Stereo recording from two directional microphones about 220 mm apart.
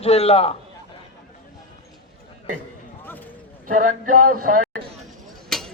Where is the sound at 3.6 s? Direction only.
35° right (ahead or behind).